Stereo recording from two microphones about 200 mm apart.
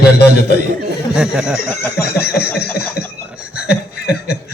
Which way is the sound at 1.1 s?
5° right (ahead or behind).